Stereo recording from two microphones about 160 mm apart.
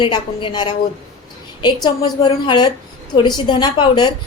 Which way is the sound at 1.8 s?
30° left (ahead or behind).